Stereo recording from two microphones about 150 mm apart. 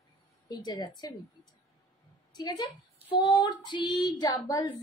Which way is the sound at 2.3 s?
25° left (ahead or behind).